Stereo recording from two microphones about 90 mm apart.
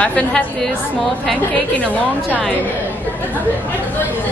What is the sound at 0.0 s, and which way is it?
Speech, 15° left (ahead or behind).